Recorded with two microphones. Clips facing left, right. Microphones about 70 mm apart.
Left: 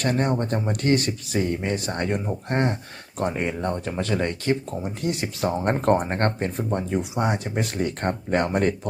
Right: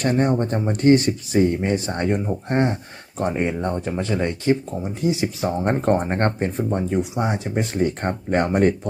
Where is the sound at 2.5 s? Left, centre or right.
Centre.